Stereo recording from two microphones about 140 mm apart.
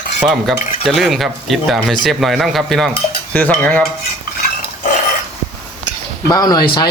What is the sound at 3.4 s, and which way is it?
Speech, 10° left (ahead or behind).